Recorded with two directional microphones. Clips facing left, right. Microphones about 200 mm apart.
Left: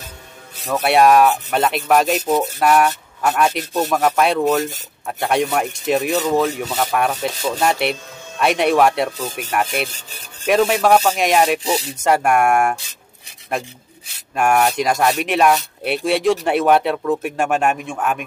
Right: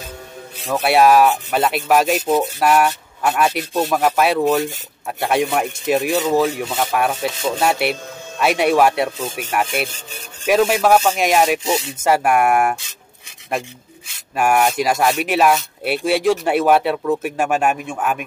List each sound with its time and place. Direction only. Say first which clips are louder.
0.8 s speech: even; centre (ahead or behind)